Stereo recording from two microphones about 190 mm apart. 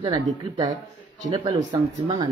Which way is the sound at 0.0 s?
25° right (ahead or behind).